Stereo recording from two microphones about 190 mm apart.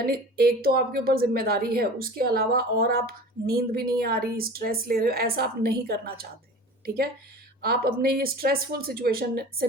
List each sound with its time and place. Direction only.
0.0 s speech: 55° right (ahead or behind)